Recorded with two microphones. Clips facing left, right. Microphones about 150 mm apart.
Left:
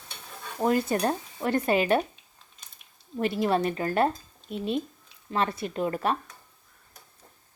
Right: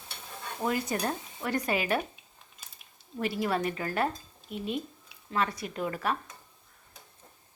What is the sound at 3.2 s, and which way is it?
Stir, 25° left (ahead or behind).